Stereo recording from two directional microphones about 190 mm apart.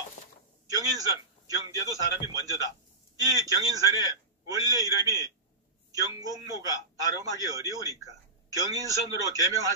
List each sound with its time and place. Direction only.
0.7 s a man's voice: 20° right (ahead or behind)